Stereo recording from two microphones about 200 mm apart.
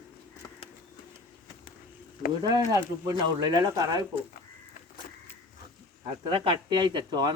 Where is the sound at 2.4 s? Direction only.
20° right (ahead or behind).